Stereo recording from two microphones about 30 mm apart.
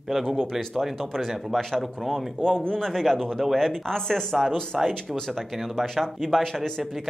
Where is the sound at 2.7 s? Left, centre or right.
Centre.